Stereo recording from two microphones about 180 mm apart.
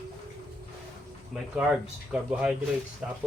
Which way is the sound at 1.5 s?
5° right (ahead or behind).